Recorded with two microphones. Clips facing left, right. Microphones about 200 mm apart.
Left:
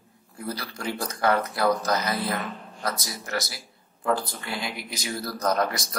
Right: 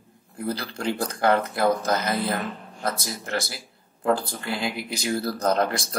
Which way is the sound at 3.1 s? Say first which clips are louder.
Right 2 dB; 30° right (ahead or behind).